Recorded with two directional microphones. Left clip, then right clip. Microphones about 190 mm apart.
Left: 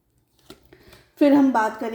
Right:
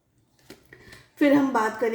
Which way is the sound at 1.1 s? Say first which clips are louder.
Left 3 dB; 35° left (ahead or behind).